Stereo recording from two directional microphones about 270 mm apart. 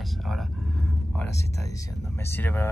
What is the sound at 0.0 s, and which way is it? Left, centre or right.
Speech, centre.